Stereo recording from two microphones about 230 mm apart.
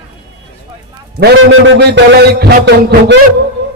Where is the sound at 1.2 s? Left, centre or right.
Right.